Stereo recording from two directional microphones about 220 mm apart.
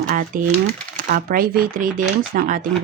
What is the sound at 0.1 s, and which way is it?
Speech, 40° right (ahead or behind).